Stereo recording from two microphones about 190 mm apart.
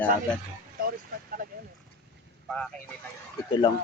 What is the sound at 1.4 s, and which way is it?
Speech, 45° right (ahead or behind).